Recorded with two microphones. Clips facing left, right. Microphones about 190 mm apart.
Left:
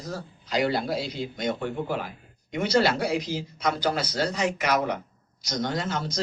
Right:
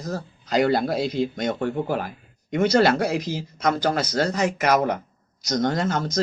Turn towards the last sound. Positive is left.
turn(degrees=-45)  # may be behind; listen again after turning